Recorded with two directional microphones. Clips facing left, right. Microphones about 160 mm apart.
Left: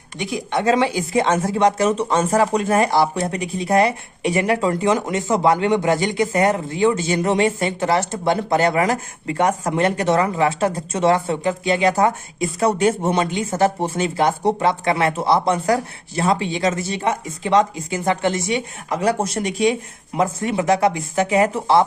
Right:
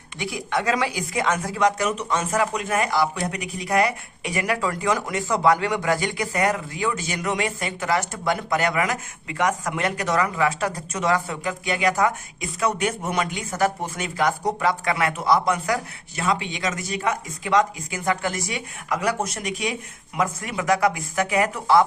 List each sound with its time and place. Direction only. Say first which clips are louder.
0.2 s speech: left 4 dB; 25° left (ahead or behind)